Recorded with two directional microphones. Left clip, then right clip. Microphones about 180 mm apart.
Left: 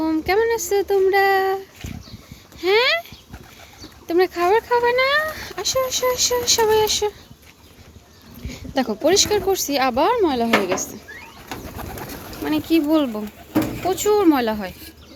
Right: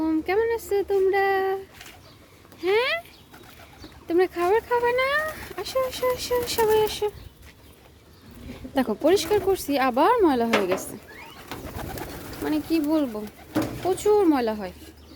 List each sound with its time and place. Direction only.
0.0 s speech: centre (ahead or behind)
8.4 s speech: 15° right (ahead or behind)
12.5 s speech: centre (ahead or behind)